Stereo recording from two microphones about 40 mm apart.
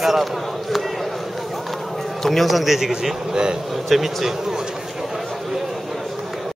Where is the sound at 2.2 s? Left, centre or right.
Centre.